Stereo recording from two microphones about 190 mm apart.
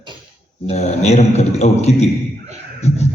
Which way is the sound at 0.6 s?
35° left (ahead or behind).